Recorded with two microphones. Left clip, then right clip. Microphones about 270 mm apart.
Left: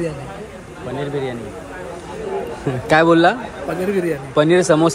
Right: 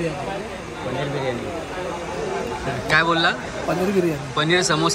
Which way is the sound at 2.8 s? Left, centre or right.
Centre.